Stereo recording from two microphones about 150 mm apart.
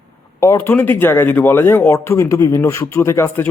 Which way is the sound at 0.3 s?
20° left (ahead or behind).